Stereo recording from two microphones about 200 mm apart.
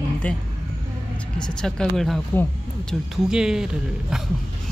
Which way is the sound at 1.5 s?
5° left (ahead or behind).